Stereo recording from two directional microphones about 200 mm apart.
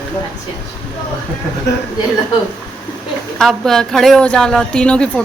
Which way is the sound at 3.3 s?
Centre (ahead or behind).